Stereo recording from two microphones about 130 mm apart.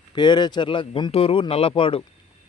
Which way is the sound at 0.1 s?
35° left (ahead or behind).